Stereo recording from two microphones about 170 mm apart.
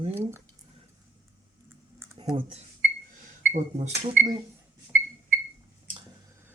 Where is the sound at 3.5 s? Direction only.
40° right (ahead or behind).